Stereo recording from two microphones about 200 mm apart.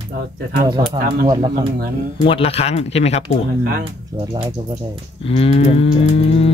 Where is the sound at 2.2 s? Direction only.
30° left (ahead or behind).